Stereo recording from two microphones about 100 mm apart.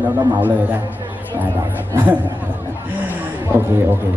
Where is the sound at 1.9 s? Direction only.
15° right (ahead or behind).